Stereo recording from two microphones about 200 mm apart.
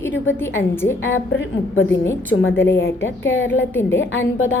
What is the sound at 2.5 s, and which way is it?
Speech, 10° left (ahead or behind).